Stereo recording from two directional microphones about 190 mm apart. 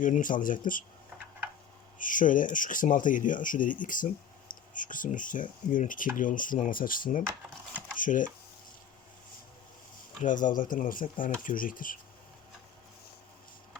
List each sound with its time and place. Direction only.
0.0 s speech: 45° left (ahead or behind)
2.0 s speech: 45° left (ahead or behind)
10.2 s speech: 45° left (ahead or behind)